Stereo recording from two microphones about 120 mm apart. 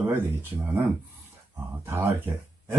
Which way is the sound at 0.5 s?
40° right (ahead or behind).